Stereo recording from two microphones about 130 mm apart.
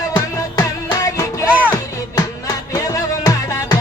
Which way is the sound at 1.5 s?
10° right (ahead or behind).